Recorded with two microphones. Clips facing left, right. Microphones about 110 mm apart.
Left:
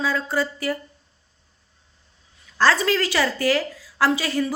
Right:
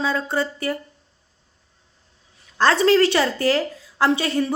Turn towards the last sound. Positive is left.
turn(degrees=-25)  # may be behind; listen again after turning